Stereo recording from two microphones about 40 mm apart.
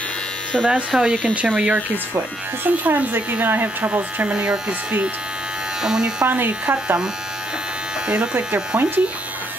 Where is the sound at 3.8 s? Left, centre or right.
Right.